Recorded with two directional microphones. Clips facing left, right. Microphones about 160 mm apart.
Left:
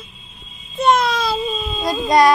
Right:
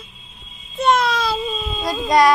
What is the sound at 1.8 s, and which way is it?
Baby cry, 25° left (ahead or behind).